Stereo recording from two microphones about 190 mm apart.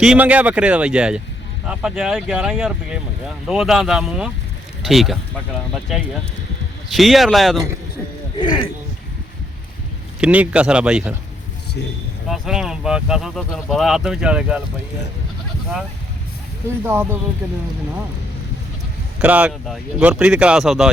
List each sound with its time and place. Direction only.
0.0 s speech: 5° right (ahead or behind)
6.9 s speech: centre (ahead or behind)
8.4 s speech: 25° left (ahead or behind)
10.2 s speech: 5° right (ahead or behind)
12.3 s speech: centre (ahead or behind)
16.8 s speech: 10° right (ahead or behind)
19.2 s speech: 5° right (ahead or behind)